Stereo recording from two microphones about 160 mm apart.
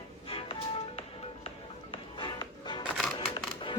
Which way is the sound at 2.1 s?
30° left (ahead or behind).